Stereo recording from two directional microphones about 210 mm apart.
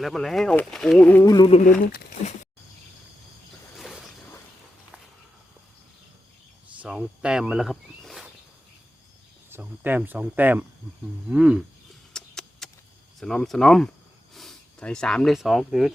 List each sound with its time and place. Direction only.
0.0 s speech: centre (ahead or behind); by 1.7 s 30° left (ahead or behind)
1.9 s speech: 45° left (ahead or behind)
3.8 s a sound: centre (ahead or behind)
6.8 s speech: 5° right (ahead or behind)
9.5 s speech: 10° right (ahead or behind)
12.1 s a sound: 5° left (ahead or behind)
13.1 s speech: centre (ahead or behind)